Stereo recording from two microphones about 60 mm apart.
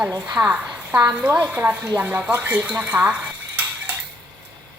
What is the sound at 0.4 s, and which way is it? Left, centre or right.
Speech, right.